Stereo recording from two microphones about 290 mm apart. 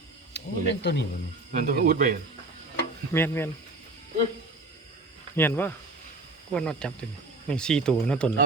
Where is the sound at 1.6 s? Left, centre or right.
Right.